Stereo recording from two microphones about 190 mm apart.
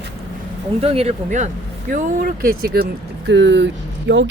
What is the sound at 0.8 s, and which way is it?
Speech, 35° right (ahead or behind).